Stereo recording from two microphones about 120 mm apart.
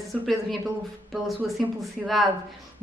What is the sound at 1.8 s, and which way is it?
Speech, centre (ahead or behind).